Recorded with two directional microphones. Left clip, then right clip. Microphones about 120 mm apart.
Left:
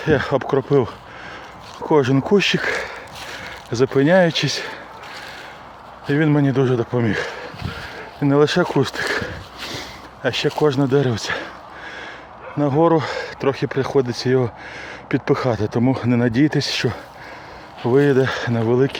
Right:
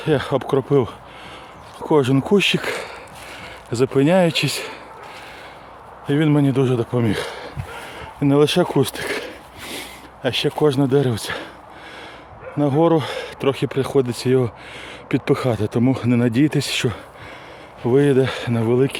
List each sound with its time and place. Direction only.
0.0 s speech: 5° right (ahead or behind)
6.1 s speech: 15° right (ahead or behind)
8.3 s a sound: 20° right (ahead or behind)
10.2 s speech: 15° right (ahead or behind)
12.5 s speech: 15° right (ahead or behind)
17.8 s speech: 10° right (ahead or behind)